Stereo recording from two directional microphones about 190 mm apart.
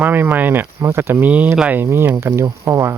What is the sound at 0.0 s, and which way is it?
Speech, 10° right (ahead or behind).